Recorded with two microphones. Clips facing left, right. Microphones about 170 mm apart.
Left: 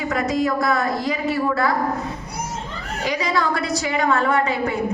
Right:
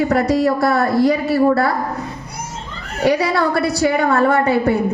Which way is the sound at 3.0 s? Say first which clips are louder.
Right 6 dB; 35° right (ahead or behind).